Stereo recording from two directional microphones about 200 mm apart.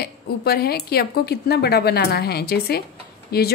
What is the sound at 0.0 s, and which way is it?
A woman's voice, 50° left (ahead or behind).